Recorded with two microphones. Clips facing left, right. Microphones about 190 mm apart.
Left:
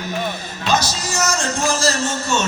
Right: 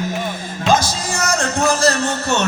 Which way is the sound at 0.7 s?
50° right (ahead or behind).